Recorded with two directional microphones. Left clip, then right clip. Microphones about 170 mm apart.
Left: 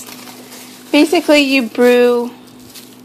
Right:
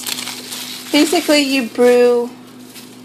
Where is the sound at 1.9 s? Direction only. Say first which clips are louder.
Even; 10° left (ahead or behind).